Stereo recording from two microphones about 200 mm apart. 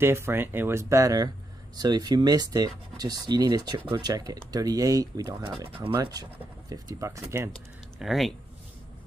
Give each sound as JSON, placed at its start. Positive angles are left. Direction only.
{"t": 0.0, "sound": "speech", "side_deg": -10}
{"t": 7.5, "sound": "speech", "side_deg": 0}